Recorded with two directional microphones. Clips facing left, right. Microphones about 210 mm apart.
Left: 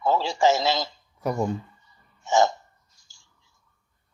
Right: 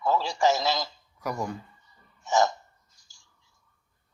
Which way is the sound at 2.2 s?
25° left (ahead or behind).